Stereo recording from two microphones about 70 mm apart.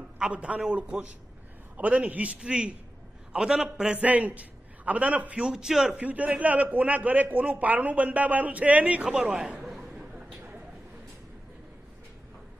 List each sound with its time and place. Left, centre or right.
0.2 s a man's voice: centre
5.9 s a man's voice: right
9.7 s chatter: centre
10.1 s a sound: right